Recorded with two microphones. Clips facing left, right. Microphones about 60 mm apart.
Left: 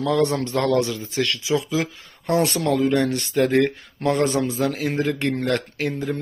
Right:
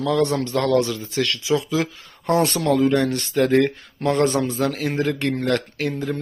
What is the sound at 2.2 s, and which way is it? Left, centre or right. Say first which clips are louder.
Speech: right 1 dB; centre.